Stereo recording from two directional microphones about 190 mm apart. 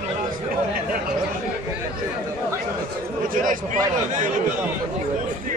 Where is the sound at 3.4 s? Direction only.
45° right (ahead or behind).